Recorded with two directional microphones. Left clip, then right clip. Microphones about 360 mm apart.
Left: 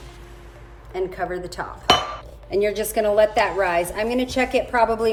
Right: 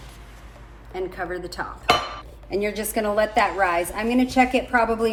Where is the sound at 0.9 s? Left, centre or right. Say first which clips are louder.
Left 3 dB; centre.